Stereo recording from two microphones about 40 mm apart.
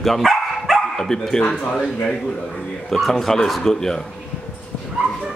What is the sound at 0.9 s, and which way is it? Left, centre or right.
Speech, centre.